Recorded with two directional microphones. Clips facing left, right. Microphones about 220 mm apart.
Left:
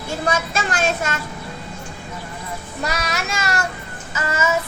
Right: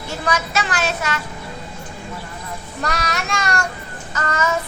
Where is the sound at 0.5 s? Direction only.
45° left (ahead or behind).